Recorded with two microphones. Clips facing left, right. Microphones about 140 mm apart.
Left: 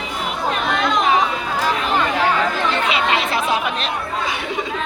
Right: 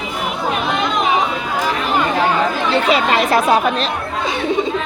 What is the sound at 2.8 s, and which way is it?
Speech, 40° right (ahead or behind).